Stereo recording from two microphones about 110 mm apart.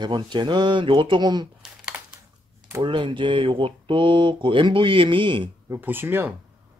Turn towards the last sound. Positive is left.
turn(degrees=-20)  # may be behind; listen again after turning